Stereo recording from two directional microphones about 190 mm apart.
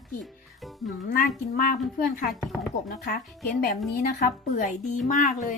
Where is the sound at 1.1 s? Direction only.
50° left (ahead or behind).